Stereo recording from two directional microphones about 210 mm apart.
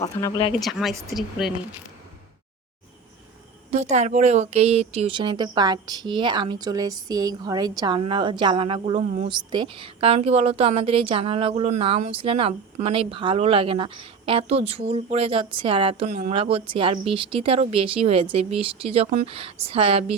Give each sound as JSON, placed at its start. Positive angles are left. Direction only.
{"t": 0.0, "sound": "speech", "side_deg": 20}
{"t": 0.6, "sound": "speech", "side_deg": 0}
{"t": 3.7, "sound": "a woman's voice", "side_deg": -30}